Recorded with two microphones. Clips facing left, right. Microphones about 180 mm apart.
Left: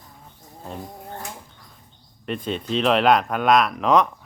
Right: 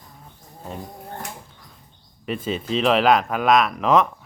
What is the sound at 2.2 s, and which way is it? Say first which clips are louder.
Speech: right 1 dB; 5° right (ahead or behind).